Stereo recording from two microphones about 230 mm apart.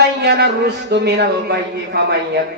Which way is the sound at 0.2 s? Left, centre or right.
Right.